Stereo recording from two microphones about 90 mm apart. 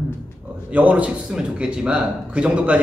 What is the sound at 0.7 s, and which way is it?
A man's voice, 15° right (ahead or behind).